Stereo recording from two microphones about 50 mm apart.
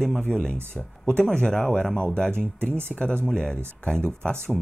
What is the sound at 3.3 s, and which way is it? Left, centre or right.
Speech, left.